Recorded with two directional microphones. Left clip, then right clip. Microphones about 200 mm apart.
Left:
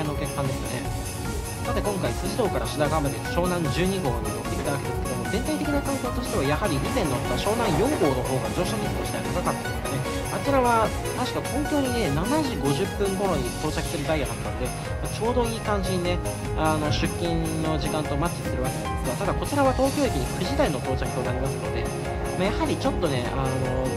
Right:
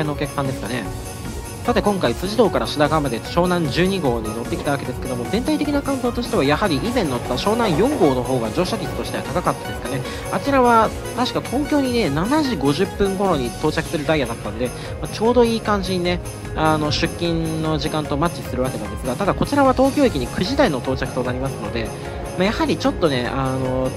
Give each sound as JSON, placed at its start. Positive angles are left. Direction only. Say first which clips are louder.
{"t": 1.7, "sound": "speech", "louder": "right 9 dB", "side_deg": -25}
{"t": 6.3, "sound": "speech", "louder": "right 7 dB", "side_deg": -20}
{"t": 7.7, "sound": "speech", "louder": "right 6 dB", "side_deg": 0}
{"t": 9.3, "sound": "speech", "louder": "right 7 dB", "side_deg": -15}
{"t": 22.4, "sound": "speech", "louder": "right 7 dB", "side_deg": -20}